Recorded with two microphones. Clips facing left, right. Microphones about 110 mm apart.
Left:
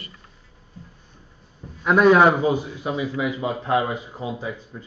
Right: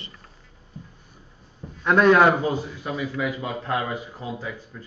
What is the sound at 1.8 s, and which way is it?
A man's voice, 10° left (ahead or behind).